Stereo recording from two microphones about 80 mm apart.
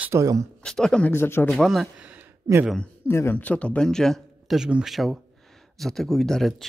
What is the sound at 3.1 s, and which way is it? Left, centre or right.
Speech, left.